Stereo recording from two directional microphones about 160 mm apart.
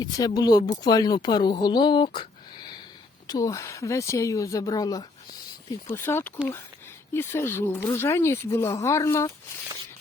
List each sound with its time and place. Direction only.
0.0 s speech: 25° left (ahead or behind)